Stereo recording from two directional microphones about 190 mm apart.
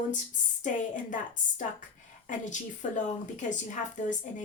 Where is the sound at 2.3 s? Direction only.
40° left (ahead or behind).